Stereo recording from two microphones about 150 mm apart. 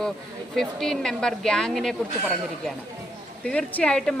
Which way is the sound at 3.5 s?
5° left (ahead or behind).